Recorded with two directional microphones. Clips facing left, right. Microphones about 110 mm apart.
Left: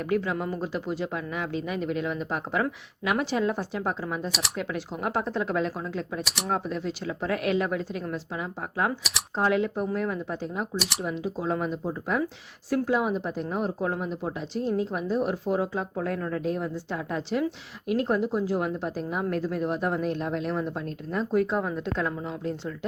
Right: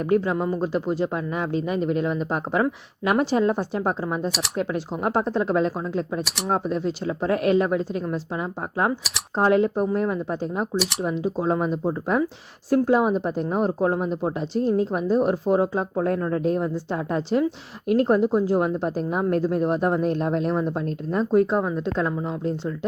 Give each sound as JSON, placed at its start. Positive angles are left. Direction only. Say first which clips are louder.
{"t": 0.1, "sound": "speech", "louder": "right 6 dB", "side_deg": -30}